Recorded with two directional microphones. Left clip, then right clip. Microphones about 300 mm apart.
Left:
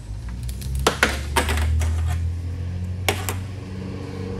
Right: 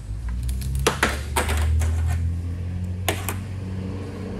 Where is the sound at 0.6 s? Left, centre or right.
Centre.